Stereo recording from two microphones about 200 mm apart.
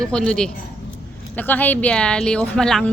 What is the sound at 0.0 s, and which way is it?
Speech, 5° left (ahead or behind).